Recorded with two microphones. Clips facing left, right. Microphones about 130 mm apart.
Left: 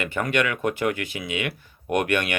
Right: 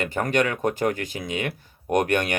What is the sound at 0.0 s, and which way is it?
Speech, 40° right (ahead or behind).